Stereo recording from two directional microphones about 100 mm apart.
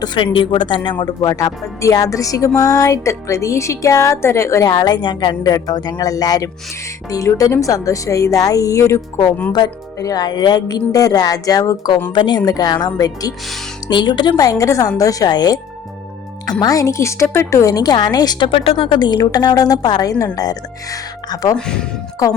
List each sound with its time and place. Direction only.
0.0 s a woman's voice: 50° left (ahead or behind); by 4.7 s 30° left (ahead or behind)
4.7 s a woman's voice: 40° left (ahead or behind)
12.1 s a woman's voice: 50° left (ahead or behind)
16.6 s a woman's voice: 35° left (ahead or behind)
18.5 s speech: 75° left (ahead or behind)
18.9 s a woman's voice: 50° left (ahead or behind)
21.5 s speech: 10° left (ahead or behind)